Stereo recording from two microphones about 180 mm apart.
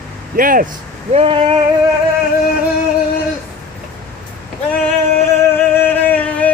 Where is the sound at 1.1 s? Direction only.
30° right (ahead or behind).